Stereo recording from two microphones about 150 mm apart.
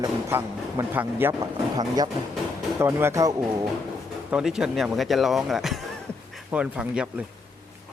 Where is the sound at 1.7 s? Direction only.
25° right (ahead or behind).